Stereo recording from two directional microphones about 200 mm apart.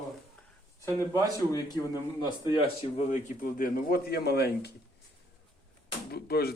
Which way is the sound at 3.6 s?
50° left (ahead or behind).